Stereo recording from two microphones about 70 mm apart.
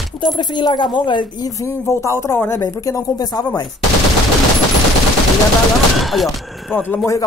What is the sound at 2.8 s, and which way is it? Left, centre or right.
Speech, left.